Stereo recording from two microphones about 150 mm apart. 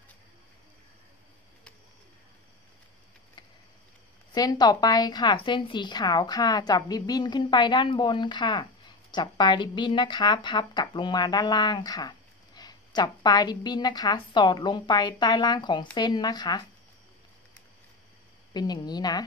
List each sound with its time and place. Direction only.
4.3 s speech: 25° left (ahead or behind)
18.5 s speech: 25° left (ahead or behind)